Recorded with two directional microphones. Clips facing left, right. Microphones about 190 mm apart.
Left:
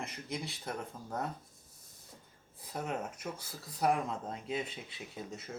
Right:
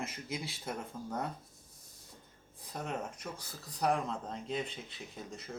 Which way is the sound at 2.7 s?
5° left (ahead or behind).